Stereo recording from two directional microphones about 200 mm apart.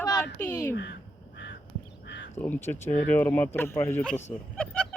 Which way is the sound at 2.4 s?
10° left (ahead or behind).